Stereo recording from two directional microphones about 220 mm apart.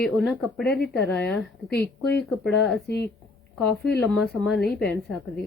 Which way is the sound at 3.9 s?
5° left (ahead or behind).